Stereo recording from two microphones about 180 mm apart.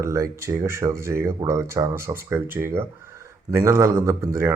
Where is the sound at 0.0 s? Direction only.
15° right (ahead or behind).